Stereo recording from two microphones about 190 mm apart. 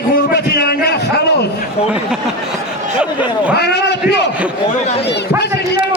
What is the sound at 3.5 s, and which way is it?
A man's voice, 60° left (ahead or behind).